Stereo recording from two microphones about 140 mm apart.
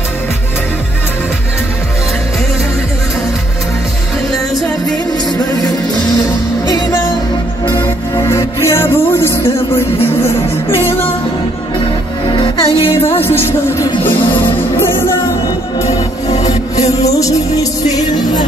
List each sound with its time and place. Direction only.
7.7 s music: 15° left (ahead or behind)
12.3 s music: 35° left (ahead or behind)
13.2 s music: 15° left (ahead or behind)
17.0 s music: 25° left (ahead or behind)